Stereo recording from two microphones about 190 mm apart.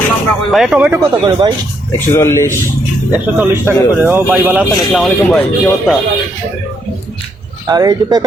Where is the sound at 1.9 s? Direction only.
15° left (ahead or behind).